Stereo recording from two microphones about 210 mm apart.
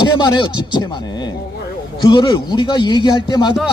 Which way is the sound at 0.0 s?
20° left (ahead or behind).